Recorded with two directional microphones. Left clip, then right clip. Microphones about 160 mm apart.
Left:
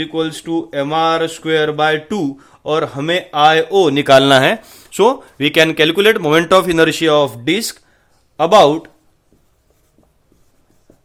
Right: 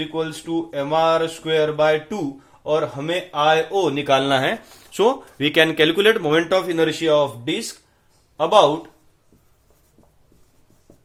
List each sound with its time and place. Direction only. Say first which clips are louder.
0.0 s speech: left 6 dB; 90° left; by 4.5 s 60° left (ahead or behind)
4.5 s speech: left 6 dB; 30° left (ahead or behind)
6.5 s speech: left 8 dB; 65° left (ahead or behind); by 8.6 s 90° left